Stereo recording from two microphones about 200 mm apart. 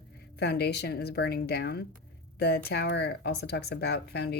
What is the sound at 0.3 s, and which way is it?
Speech, 55° left (ahead or behind).